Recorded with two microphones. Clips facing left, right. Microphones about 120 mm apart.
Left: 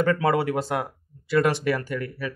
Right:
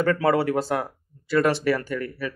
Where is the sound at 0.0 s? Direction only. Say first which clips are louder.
Right 1 dB; 15° left (ahead or behind).